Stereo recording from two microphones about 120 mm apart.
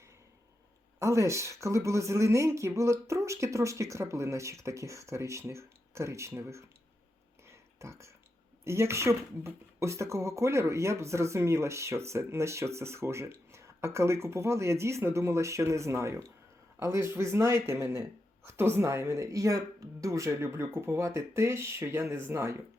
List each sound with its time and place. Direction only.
0.9 s speech: 25° right (ahead or behind)
7.4 s a sound: 25° right (ahead or behind)
8.6 s speech: 20° right (ahead or behind)